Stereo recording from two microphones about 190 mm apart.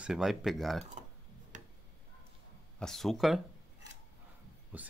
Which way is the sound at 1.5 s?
40° right (ahead or behind).